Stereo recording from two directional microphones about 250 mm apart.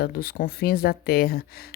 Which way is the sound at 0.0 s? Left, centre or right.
Left.